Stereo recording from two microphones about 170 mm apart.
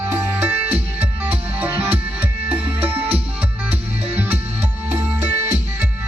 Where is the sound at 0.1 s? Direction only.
15° right (ahead or behind).